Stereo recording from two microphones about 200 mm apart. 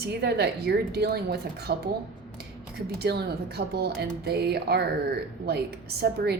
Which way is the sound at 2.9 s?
55° right (ahead or behind).